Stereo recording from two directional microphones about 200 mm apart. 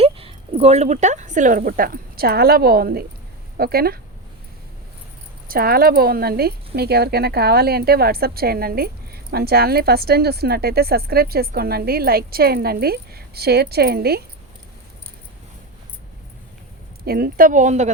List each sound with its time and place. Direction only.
0.0 s speech: 30° right (ahead or behind); by 4.0 s 50° right (ahead or behind)
5.5 s speech: 50° right (ahead or behind)
17.1 s a woman's voice: 45° right (ahead or behind)